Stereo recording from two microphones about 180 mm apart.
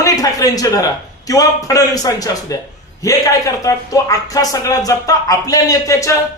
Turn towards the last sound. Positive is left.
turn(degrees=15)  # may be behind; listen again after turning